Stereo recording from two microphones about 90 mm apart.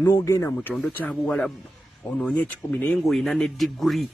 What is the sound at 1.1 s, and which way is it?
Speech, 5° left (ahead or behind).